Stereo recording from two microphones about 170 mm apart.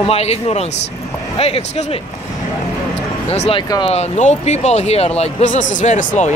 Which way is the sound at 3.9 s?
40° left (ahead or behind).